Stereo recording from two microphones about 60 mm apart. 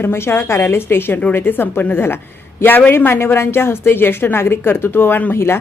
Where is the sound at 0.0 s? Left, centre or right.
Left.